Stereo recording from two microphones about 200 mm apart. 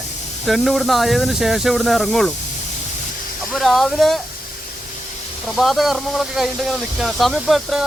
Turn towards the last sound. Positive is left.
turn(degrees=0)  # may be behind; listen again after turning